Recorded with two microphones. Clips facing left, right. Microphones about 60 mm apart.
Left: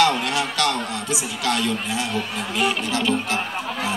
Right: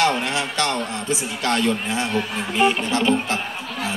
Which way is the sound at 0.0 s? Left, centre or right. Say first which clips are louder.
Left 1 dB; right.